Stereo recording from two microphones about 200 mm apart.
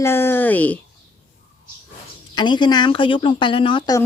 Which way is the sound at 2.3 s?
20° left (ahead or behind).